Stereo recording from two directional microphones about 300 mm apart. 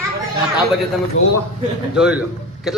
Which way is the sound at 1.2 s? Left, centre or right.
Left.